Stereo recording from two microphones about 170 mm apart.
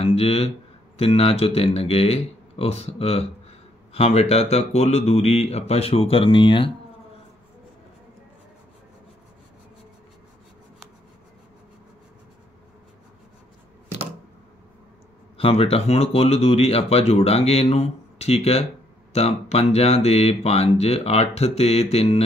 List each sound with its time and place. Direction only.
0.0 s a sound: 35° left (ahead or behind)
0.9 s speech: 35° left (ahead or behind)
15.3 s speech: 35° left (ahead or behind)